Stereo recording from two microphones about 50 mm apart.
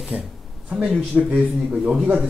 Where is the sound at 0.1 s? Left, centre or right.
Right.